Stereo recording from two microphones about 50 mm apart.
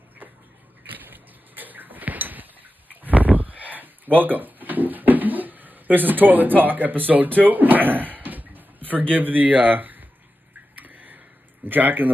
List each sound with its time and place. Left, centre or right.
0.8 s a sound: right
9.1 s speech: right
10.8 s tick-tock: right
11.6 s speech: right